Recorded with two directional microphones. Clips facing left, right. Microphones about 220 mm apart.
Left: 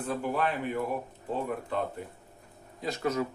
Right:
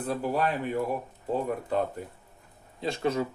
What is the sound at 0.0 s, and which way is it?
Speech, 35° right (ahead or behind).